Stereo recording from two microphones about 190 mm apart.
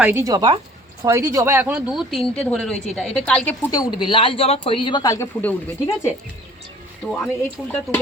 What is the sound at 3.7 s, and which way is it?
Speech, 25° left (ahead or behind).